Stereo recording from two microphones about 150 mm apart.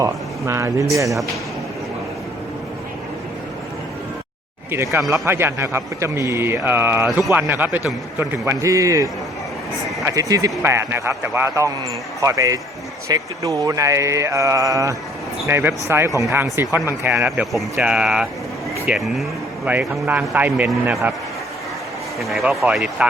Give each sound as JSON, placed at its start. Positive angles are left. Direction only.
{"t": 0.0, "sound": "speech", "side_deg": -20}
{"t": 4.7, "sound": "a man's voice", "side_deg": -20}
{"t": 17.4, "sound": "a man's voice", "side_deg": 0}
{"t": 22.2, "sound": "speech", "side_deg": 0}